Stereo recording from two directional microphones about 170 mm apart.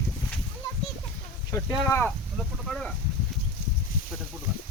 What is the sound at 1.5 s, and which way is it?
Speech, 15° left (ahead or behind).